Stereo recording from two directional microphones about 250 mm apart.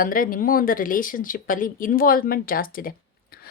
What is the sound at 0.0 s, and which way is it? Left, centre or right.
Speech, left.